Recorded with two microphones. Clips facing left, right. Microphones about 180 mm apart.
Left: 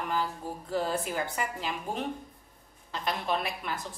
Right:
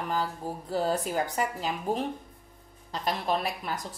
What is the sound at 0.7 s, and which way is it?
Speech, 40° right (ahead or behind).